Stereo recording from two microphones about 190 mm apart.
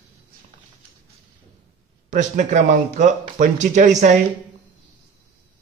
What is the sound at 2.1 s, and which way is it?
Speech, 40° right (ahead or behind).